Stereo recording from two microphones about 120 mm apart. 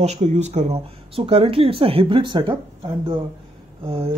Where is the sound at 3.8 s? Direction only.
50° right (ahead or behind).